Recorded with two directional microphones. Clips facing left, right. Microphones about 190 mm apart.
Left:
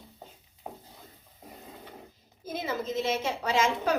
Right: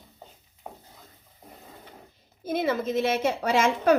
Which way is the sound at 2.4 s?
65° right (ahead or behind).